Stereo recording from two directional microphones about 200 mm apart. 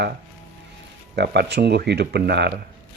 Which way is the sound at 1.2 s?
55° right (ahead or behind).